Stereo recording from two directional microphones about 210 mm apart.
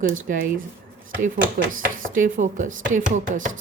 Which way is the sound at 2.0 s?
40° right (ahead or behind).